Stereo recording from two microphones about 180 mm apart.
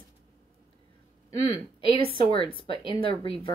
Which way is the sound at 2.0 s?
30° left (ahead or behind).